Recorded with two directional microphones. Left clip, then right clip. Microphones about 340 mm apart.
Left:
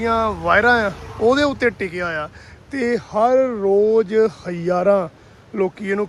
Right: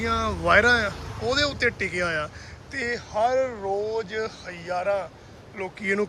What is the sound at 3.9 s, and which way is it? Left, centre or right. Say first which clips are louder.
Speech: left 13 dB; centre.